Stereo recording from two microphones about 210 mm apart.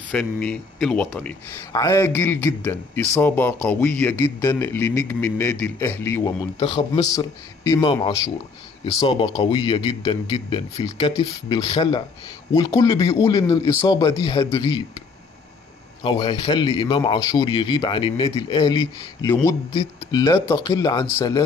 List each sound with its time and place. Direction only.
0.1 s speech: 5° left (ahead or behind)
1.7 s a man's voice: 15° left (ahead or behind)
16.0 s a man's voice: 25° left (ahead or behind)